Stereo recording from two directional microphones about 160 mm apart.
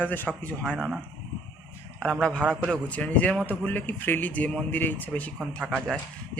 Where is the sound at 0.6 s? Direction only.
5° right (ahead or behind).